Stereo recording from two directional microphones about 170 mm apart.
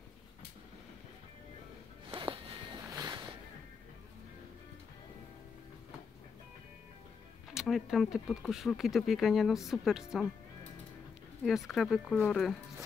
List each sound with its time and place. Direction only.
2.0 s a sound: 30° right (ahead or behind)
7.5 s speech: centre (ahead or behind)
11.4 s speech: centre (ahead or behind)